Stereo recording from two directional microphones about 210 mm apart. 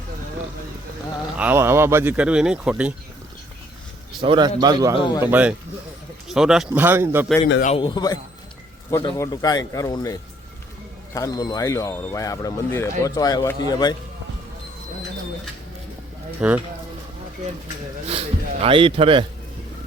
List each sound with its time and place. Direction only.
1.4 s speech: 10° right (ahead or behind)
4.2 s speech: 20° right (ahead or behind)
7.6 s a man's voice: 25° left (ahead or behind)
16.4 s speech: 5° right (ahead or behind)
18.1 s speech: 30° right (ahead or behind)